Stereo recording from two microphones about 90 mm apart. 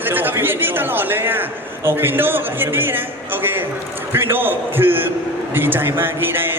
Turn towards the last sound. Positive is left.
turn(degrees=-25)  # may be behind; listen again after turning